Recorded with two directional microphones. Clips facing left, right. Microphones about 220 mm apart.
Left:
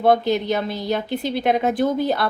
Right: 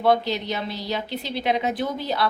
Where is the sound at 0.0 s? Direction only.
50° left (ahead or behind).